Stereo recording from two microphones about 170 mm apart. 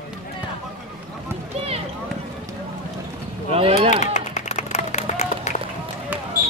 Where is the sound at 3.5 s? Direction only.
35° right (ahead or behind).